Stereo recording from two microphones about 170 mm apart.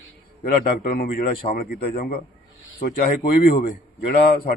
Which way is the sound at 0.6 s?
55° left (ahead or behind).